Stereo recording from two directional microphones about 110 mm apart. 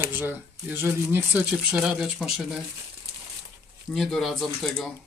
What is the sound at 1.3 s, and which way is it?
Speech, 10° right (ahead or behind).